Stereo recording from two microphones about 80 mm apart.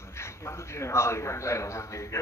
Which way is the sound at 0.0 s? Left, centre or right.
Left.